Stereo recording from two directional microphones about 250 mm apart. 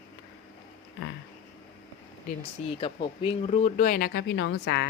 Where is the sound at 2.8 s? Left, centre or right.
Centre.